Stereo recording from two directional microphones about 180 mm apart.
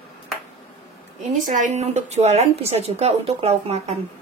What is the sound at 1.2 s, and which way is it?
Speech, 45° right (ahead or behind).